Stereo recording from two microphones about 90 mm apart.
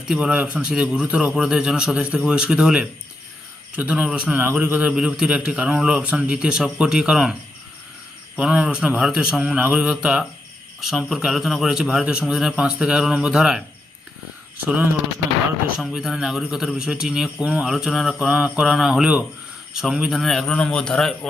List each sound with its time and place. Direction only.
0.1 s a man's voice: 10° right (ahead or behind)
8.4 s a man's voice: 10° right (ahead or behind)
15.9 s a man's voice: 10° right (ahead or behind)
18.3 s a man's voice: 10° right (ahead or behind); by 21.2 s 5° left (ahead or behind)